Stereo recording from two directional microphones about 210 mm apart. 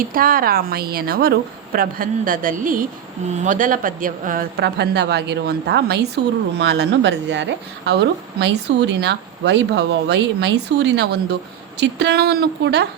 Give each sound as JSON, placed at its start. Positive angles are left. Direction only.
{"t": 0.0, "sound": "speech", "side_deg": -45}